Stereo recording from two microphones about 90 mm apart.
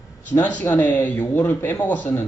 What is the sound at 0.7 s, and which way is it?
Speech, 20° left (ahead or behind).